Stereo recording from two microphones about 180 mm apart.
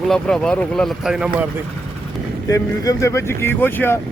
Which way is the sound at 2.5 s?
15° left (ahead or behind).